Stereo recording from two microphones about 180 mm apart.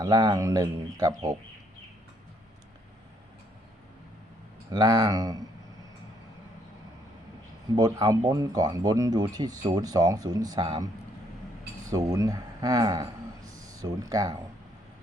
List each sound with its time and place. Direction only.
0.0 s speech: 20° right (ahead or behind)
4.7 s speech: 20° right (ahead or behind)
7.8 s speech: 20° right (ahead or behind)
11.9 s a man's voice: 20° right (ahead or behind)